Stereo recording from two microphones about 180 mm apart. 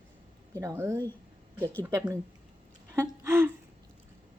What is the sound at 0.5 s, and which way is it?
Speech, 15° right (ahead or behind).